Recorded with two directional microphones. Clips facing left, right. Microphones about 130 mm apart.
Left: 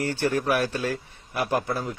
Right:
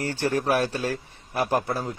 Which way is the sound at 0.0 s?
35° right (ahead or behind).